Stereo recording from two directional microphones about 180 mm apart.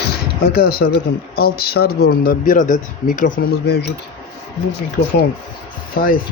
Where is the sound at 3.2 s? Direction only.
80° left.